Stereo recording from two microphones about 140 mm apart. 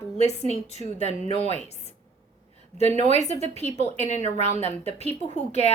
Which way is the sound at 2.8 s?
50° left (ahead or behind).